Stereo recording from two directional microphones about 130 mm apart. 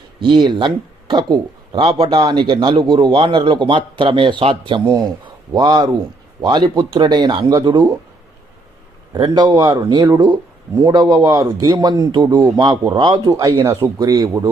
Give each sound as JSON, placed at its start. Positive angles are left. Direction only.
{"t": 0.2, "sound": "speech", "side_deg": -35}
{"t": 9.1, "sound": "a man's voice", "side_deg": -35}
{"t": 13.3, "sound": "a man's voice", "side_deg": -25}